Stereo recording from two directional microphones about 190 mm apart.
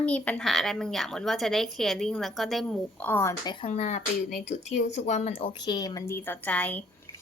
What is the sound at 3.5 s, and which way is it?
A woman's voice, 35° left (ahead or behind).